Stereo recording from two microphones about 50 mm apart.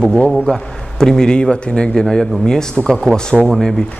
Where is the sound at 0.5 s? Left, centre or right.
Centre.